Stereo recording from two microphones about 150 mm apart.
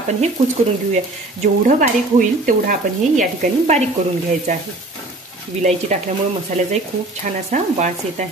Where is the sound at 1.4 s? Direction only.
60° right (ahead or behind).